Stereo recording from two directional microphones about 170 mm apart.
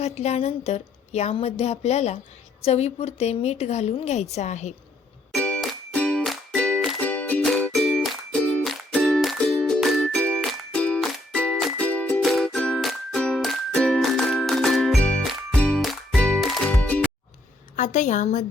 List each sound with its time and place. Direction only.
0.0 s a woman's voice: 40° left (ahead or behind)
5.3 s music: 5° left (ahead or behind)
17.7 s a woman's voice: 45° left (ahead or behind)